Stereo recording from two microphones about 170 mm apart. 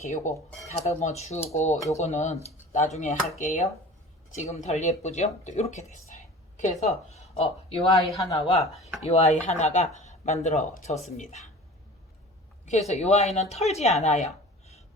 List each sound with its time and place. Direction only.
0.0 s a woman's voice: 45° left (ahead or behind)
12.6 s a woman's voice: 40° left (ahead or behind)
14.0 s a sound: 40° left (ahead or behind)